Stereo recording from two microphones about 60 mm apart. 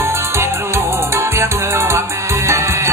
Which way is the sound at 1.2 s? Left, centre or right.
Right.